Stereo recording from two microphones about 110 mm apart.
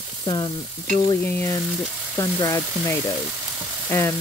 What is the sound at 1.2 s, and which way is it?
Frying, 20° left (ahead or behind).